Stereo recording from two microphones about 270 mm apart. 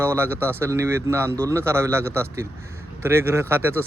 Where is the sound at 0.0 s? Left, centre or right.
Centre.